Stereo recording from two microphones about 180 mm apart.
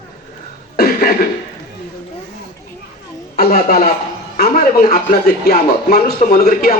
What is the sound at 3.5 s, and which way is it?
Speech, 50° left (ahead or behind).